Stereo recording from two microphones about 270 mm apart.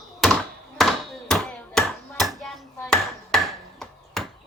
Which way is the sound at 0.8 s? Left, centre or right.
Centre.